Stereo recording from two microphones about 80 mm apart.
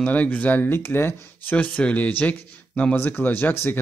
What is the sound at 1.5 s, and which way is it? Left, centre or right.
Speech, centre.